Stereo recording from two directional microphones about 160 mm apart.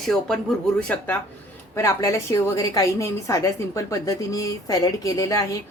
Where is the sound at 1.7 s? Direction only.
20° left (ahead or behind).